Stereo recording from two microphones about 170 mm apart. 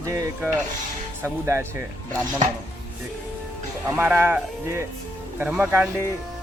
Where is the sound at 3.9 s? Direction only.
10° right (ahead or behind).